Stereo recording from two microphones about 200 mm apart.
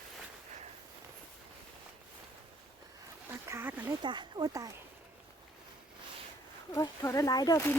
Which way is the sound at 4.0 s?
20° right (ahead or behind).